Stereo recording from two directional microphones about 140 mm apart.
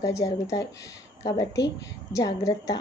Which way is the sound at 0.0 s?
25° left (ahead or behind).